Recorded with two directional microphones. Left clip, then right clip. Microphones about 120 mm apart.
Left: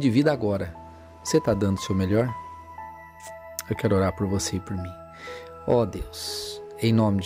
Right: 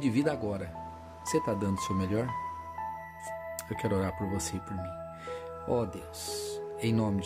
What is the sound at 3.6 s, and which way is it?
Speech, 50° left (ahead or behind).